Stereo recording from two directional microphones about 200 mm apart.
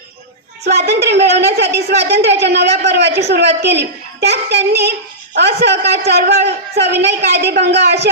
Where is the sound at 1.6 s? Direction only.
55° right (ahead or behind).